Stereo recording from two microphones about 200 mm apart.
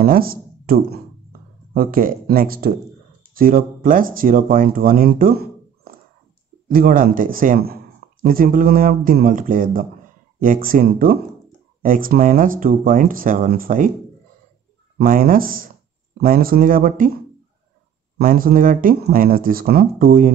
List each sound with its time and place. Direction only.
0.0 s speech: 45° right (ahead or behind)
6.7 s speech: 45° right (ahead or behind)
15.0 s speech: 45° right (ahead or behind)